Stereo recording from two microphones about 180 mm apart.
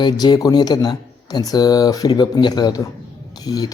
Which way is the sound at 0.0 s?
25° left (ahead or behind).